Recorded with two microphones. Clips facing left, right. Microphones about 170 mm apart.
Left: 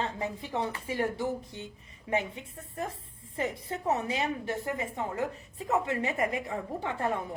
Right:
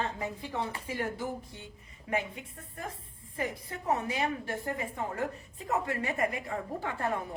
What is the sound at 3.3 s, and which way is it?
A woman's voice, 25° left (ahead or behind).